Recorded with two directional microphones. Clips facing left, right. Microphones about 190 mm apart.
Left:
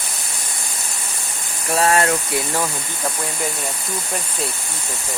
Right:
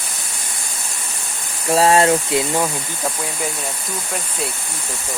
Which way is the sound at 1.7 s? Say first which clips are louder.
Right 4 dB; 25° right (ahead or behind).